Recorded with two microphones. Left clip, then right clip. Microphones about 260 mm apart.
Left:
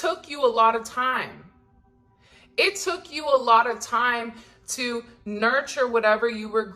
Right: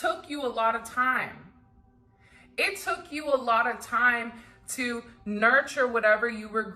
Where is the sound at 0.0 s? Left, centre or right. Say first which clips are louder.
Left 6 dB; left.